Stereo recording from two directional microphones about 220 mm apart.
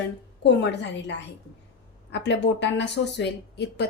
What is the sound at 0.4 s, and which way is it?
Speech, 50° left (ahead or behind).